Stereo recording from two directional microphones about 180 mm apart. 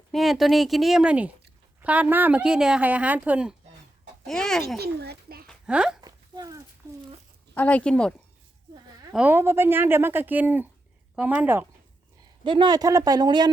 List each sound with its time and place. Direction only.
0.1 s a woman's voice: centre (ahead or behind)
4.8 s a child's voice: 65° right (ahead or behind)
5.5 s a sound: 5° right (ahead or behind)
6.0 s a sound: 20° right (ahead or behind)
7.5 s speech: 10° left (ahead or behind)
9.1 s a woman's voice: 10° right (ahead or behind)
12.5 s speech: 25° right (ahead or behind)